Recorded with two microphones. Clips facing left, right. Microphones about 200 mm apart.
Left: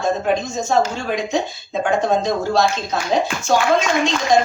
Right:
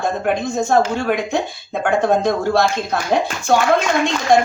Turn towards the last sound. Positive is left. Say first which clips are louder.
# right 2 dB
turn(degrees=-55)  # may be behind; listen again after turning